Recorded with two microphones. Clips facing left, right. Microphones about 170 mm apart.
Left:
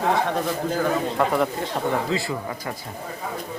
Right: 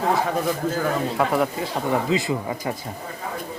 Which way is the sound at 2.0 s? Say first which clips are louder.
Right 3 dB; 20° right (ahead or behind).